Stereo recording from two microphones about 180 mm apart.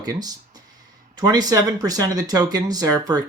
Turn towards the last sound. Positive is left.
turn(degrees=-20)  # may be behind; listen again after turning